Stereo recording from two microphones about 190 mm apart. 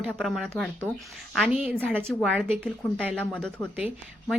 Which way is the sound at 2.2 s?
Centre (ahead or behind).